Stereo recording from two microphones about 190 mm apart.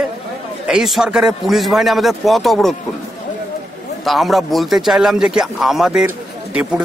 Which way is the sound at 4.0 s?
Centre (ahead or behind).